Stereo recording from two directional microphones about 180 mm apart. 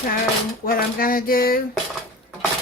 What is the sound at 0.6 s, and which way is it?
Speech, 55° left (ahead or behind).